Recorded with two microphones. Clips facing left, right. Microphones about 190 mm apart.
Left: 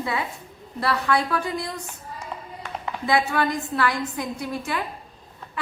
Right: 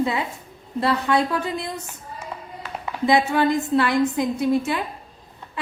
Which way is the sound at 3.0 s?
20° right (ahead or behind).